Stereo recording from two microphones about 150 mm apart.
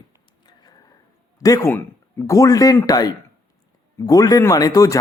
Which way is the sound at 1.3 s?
25° left (ahead or behind).